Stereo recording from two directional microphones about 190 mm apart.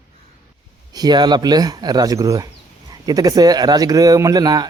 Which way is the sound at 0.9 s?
20° right (ahead or behind).